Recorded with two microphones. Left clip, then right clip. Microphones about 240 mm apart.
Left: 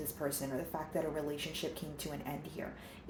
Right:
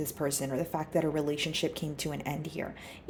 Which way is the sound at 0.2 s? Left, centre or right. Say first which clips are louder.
Right 6 dB; right.